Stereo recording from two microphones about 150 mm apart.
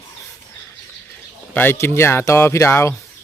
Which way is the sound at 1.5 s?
15° left (ahead or behind).